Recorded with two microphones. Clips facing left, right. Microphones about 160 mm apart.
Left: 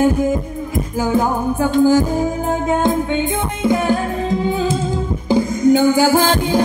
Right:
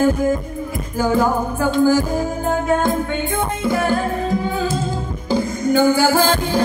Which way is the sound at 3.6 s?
20° left (ahead or behind).